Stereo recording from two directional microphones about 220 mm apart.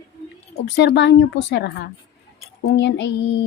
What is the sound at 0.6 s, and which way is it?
Speech, 50° left (ahead or behind).